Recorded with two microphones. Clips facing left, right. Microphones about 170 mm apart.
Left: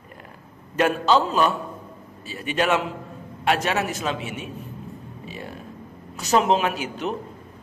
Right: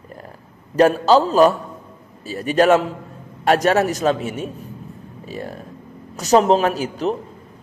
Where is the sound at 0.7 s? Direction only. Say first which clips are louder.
Right 6 dB; 35° right (ahead or behind).